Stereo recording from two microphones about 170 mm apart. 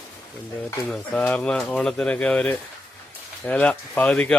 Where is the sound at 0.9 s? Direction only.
5° left (ahead or behind).